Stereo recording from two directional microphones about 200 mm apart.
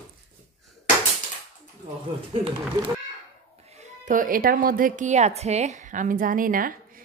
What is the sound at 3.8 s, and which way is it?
Speech, 40° right (ahead or behind).